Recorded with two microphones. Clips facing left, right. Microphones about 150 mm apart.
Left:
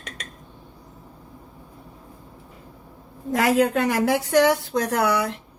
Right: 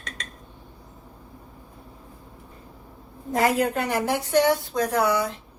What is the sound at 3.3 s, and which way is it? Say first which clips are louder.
Speech: left 3 dB; 90° left.